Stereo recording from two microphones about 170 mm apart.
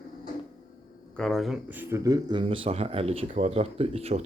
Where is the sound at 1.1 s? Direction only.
Centre (ahead or behind).